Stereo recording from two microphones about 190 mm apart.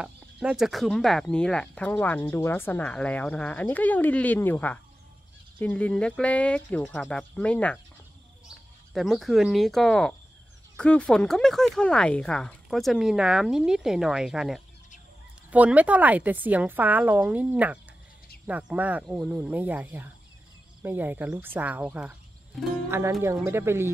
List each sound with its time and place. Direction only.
0.0 s speech: 5° right (ahead or behind)
8.9 s a woman's voice: centre (ahead or behind)
22.8 s a woman's voice: 15° right (ahead or behind)